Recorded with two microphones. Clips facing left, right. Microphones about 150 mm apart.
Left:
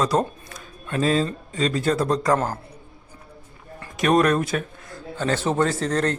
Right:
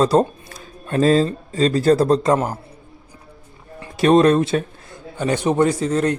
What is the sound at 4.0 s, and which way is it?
Speech, 30° right (ahead or behind).